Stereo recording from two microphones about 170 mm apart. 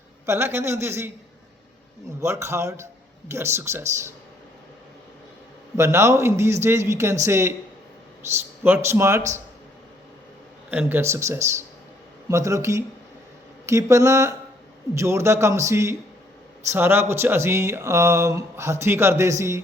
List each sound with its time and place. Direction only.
0.3 s speech: 15° right (ahead or behind)
2.2 s speech: 15° right (ahead or behind)
5.7 s speech: 15° right (ahead or behind)
8.6 s speech: 15° right (ahead or behind)
10.7 s speech: 10° right (ahead or behind)